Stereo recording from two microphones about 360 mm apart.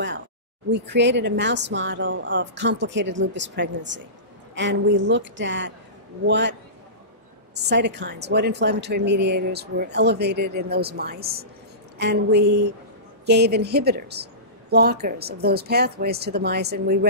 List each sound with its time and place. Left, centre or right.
0.7 s a woman's voice: right
7.5 s speech: right